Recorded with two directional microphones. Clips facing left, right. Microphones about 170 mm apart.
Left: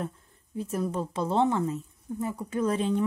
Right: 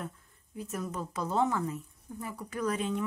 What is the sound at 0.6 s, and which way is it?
A woman's voice, 30° left (ahead or behind).